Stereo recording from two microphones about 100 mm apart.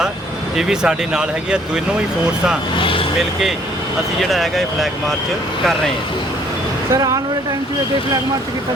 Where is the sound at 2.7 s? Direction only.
60° left (ahead or behind).